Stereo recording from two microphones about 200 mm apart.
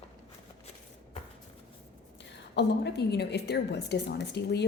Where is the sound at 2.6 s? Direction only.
55° left (ahead or behind).